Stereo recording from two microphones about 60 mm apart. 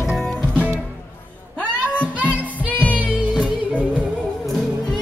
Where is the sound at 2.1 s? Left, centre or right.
Right.